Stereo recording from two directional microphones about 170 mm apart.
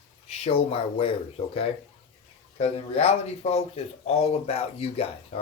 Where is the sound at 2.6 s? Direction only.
35° left (ahead or behind).